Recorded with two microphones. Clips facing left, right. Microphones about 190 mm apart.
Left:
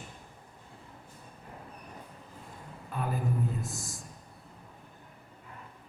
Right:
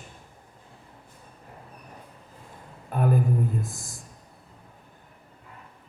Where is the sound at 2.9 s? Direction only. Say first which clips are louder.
Right 10 dB; 50° right (ahead or behind).